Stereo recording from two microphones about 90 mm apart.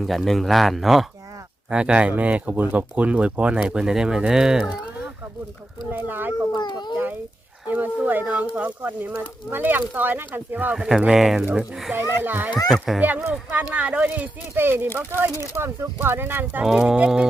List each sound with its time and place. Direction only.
0.0 s speech: centre (ahead or behind)
1.7 s speech: 10° right (ahead or behind)
5.9 s speech: 20° right (ahead or behind)
6.5 s a sound: 50° left (ahead or behind)
7.7 s speech: 20° right (ahead or behind)
10.8 s speech: 5° right (ahead or behind)
11.9 s speech: 20° right (ahead or behind)
12.6 s speech: centre (ahead or behind)
13.0 s speech: 15° right (ahead or behind)
16.6 s speech: 10° right (ahead or behind)